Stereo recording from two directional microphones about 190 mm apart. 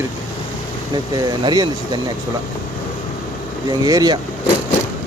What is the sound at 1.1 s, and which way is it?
Speech, 20° right (ahead or behind).